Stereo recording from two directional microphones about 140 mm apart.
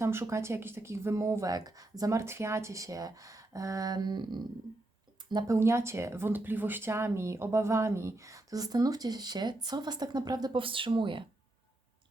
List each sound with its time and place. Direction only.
0.0 s speech: 20° right (ahead or behind); by 11.3 s 35° right (ahead or behind)